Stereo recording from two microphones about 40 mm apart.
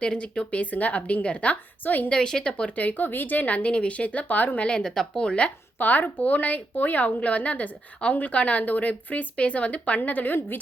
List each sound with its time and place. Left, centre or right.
0.0 s speech: left
0.6 s a woman's voice: left
1.8 s a woman's voice: left
2.0 s a woman's voice: centre; by 4.6 s left
4.6 s speech: left
4.9 s speech: centre
5.2 s speech: left
5.8 s a woman's voice: left
10.0 s a woman's voice: left